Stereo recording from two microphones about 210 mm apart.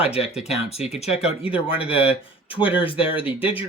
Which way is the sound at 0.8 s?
30° left (ahead or behind).